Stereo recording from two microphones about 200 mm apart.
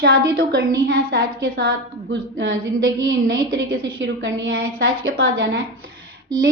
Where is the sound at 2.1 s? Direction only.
65° right (ahead or behind).